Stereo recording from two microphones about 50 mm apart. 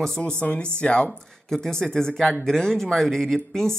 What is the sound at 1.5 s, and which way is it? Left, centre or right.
Speech, centre.